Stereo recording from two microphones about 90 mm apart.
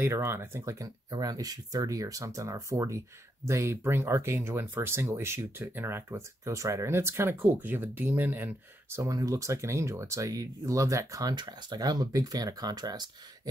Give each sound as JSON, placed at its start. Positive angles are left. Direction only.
{"t": 0.0, "sound": "speech", "side_deg": -30}
{"t": 9.0, "sound": "speech", "side_deg": -40}